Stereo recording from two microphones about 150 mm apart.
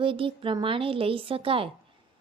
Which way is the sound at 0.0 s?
35° right (ahead or behind).